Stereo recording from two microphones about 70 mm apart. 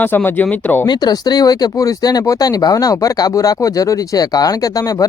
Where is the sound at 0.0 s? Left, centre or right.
Left.